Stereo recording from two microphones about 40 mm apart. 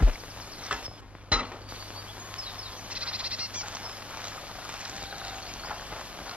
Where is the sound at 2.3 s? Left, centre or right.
Right.